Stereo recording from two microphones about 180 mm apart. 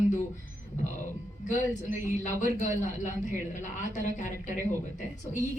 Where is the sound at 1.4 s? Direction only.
45° left (ahead or behind).